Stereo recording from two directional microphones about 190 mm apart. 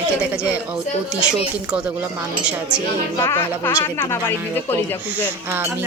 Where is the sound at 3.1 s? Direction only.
15° left (ahead or behind).